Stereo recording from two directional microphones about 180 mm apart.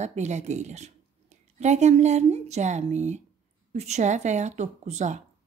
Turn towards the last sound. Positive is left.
turn(degrees=-40)  # may be behind; listen again after turning